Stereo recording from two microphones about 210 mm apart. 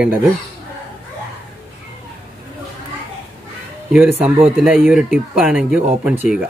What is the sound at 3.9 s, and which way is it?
Speech, 5° right (ahead or behind).